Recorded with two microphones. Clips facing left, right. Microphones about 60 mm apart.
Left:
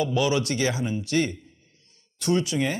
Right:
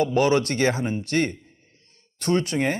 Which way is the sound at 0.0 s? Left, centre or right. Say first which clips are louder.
Right 4 dB; right.